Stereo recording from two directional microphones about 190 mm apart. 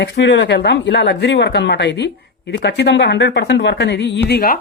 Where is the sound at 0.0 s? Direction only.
65° left (ahead or behind).